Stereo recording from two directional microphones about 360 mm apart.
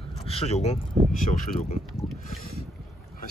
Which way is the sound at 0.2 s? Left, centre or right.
Centre.